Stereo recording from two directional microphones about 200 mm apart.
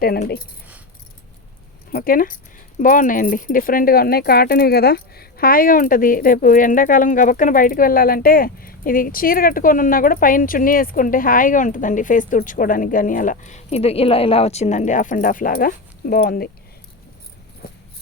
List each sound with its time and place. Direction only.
0.0 s speech: 50° left (ahead or behind)
1.9 s speech: 45° left (ahead or behind)
17.6 s a sound: 50° left (ahead or behind)